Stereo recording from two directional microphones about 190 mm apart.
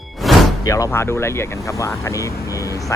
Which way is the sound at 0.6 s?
15° left (ahead or behind).